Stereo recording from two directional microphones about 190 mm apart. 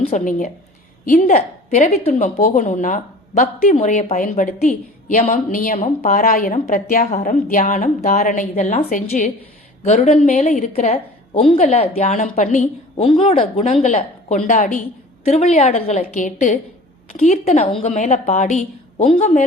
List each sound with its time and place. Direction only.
0.0 s a woman's voice: 40° left (ahead or behind)
13.1 s a woman's voice: 30° left (ahead or behind)